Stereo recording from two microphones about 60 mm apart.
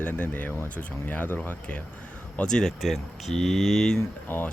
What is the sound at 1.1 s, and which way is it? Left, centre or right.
Speech, left.